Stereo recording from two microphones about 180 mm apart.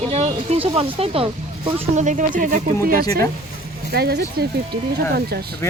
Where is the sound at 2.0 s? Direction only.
45° right (ahead or behind).